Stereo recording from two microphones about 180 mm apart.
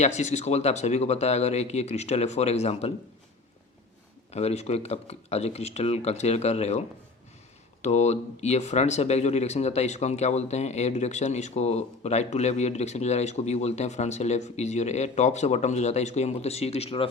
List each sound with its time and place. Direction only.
0.0 s speech: 40° left (ahead or behind)
4.3 s speech: 35° left (ahead or behind)